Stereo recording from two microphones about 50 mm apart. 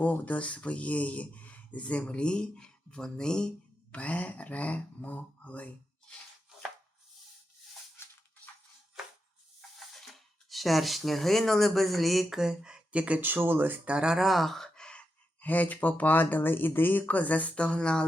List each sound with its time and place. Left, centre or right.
0.0 s speech: left; by 3.5 s centre
3.9 s speech: left
9.6 s speech: centre; by 13.2 s right
13.2 s speech: right
13.8 s speech: centre
14.3 s speech: centre
15.4 s speech: left
17.5 s speech: left